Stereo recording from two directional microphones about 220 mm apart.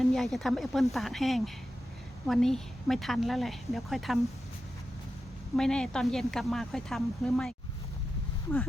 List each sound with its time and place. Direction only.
0.0 s speech: centre (ahead or behind)
5.5 s speech: 5° left (ahead or behind)